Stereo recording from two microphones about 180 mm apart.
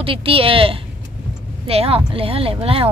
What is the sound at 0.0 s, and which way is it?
Speech, 30° right (ahead or behind).